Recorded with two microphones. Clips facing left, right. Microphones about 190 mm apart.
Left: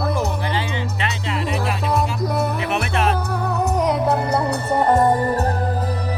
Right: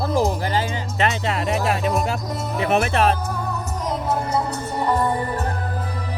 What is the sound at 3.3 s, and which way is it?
Music, 65° left (ahead or behind).